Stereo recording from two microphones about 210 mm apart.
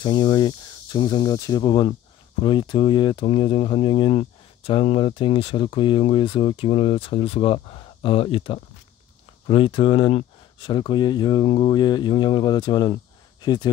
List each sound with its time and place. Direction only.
0.0 s speech: 20° left (ahead or behind)